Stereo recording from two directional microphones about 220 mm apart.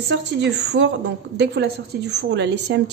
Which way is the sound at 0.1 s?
55° right (ahead or behind).